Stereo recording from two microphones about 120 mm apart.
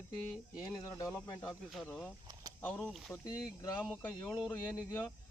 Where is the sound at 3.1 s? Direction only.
25° left (ahead or behind).